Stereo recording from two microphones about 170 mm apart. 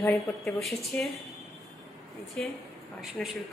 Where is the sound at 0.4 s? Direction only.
Centre (ahead or behind).